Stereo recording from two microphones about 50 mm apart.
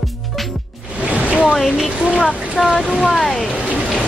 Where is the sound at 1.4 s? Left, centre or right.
Centre.